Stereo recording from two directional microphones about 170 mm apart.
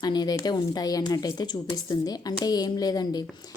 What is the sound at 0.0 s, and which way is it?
A woman's voice, 25° left (ahead or behind).